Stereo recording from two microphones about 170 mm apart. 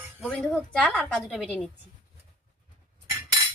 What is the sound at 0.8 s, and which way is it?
Speech, 5° left (ahead or behind).